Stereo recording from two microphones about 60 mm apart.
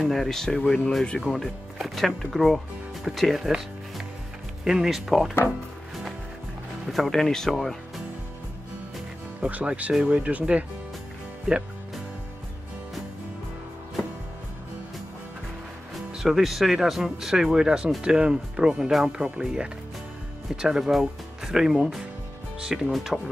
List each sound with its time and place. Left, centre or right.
0.0 s speech: centre
4.6 s speech: centre
6.9 s speech: centre
9.4 s speech: right
16.1 s speech: centre
18.8 s speech: centre
19.0 s speech: centre